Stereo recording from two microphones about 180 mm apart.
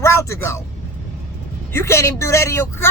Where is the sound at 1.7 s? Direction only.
15° left (ahead or behind).